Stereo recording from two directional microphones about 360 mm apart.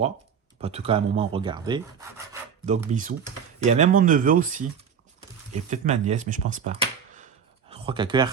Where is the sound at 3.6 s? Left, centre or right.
Centre.